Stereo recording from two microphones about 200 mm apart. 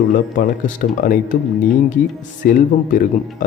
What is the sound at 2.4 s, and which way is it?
Speech, 40° left (ahead or behind).